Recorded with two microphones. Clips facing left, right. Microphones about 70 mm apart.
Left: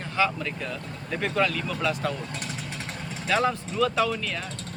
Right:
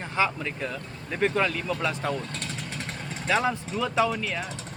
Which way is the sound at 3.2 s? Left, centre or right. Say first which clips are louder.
Left 1 dB; centre.